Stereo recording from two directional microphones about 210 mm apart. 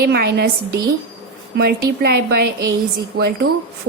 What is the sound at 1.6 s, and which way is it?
Speech, 50° right (ahead or behind).